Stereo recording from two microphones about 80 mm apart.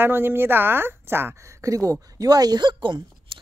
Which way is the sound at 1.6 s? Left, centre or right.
Right.